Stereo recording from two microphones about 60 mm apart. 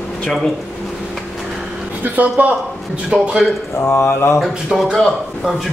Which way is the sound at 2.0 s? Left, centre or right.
Right.